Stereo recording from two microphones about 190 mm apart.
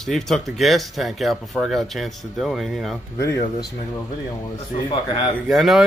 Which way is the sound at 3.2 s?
15° left (ahead or behind).